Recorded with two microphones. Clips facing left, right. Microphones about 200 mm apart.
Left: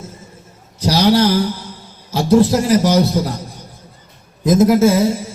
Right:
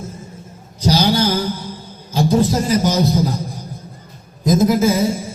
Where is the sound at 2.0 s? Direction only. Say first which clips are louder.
Left 3 dB; 70° left (ahead or behind).